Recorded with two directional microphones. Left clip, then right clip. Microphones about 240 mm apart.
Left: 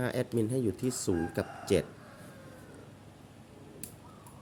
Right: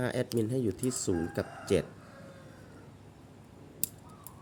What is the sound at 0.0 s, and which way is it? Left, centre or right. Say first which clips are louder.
Speech: even; centre.